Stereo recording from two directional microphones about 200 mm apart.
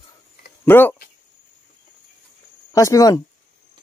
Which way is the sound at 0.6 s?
10° left (ahead or behind).